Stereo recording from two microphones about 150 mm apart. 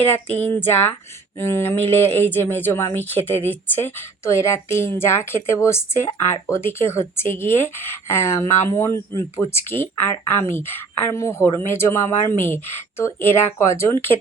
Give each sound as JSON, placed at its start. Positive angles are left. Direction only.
{"t": 0.3, "sound": "a woman's voice", "side_deg": 15}